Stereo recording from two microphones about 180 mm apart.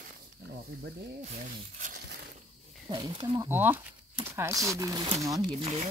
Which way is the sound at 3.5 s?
10° right (ahead or behind).